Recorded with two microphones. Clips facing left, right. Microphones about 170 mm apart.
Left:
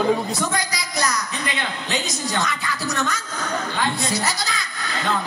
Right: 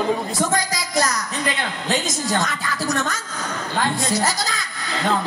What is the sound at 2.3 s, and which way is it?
Music, 45° right (ahead or behind).